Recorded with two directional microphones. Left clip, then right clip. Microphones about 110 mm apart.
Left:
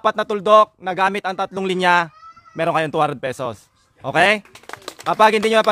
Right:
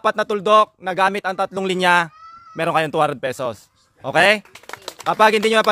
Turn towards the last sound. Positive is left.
turn(degrees=-10)  # may be behind; listen again after turning